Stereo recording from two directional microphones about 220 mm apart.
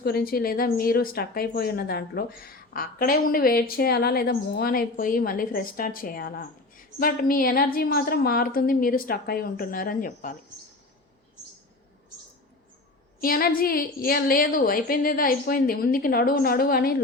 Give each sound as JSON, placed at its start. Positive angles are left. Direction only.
{"t": 0.0, "sound": "speech", "side_deg": 45}
{"t": 13.2, "sound": "speech", "side_deg": 40}